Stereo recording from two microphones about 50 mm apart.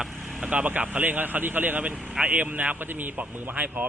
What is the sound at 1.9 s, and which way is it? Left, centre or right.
Speech, centre.